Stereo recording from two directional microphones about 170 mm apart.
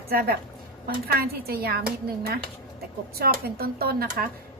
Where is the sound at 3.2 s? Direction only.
65° right (ahead or behind).